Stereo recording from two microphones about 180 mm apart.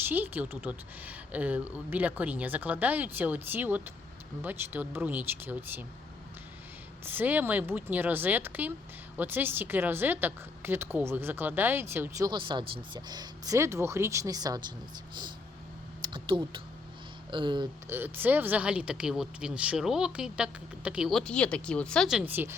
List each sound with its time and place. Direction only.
0.1 s a woman's voice: 10° right (ahead or behind)
7.0 s a woman's voice: 10° right (ahead or behind)
16.0 s a sound: 25° right (ahead or behind)
17.3 s speech: 25° right (ahead or behind)
17.8 s speech: 10° right (ahead or behind)